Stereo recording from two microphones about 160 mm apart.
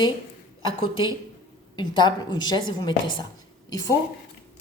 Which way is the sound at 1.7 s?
30° left (ahead or behind).